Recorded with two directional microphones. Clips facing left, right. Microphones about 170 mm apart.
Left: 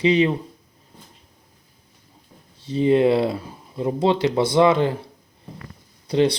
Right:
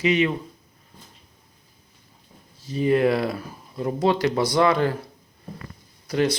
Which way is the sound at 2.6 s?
25° left (ahead or behind).